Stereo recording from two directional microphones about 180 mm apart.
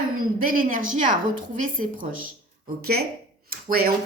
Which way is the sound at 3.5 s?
55° right (ahead or behind).